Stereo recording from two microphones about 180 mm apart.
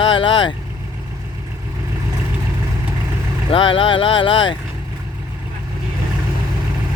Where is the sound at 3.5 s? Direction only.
30° left (ahead or behind).